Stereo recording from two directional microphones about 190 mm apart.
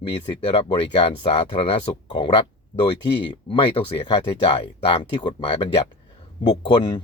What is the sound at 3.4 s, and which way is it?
Speech, 25° left (ahead or behind).